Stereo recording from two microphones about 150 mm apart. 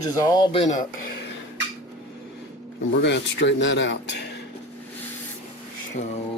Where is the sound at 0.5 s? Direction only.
50° left (ahead or behind).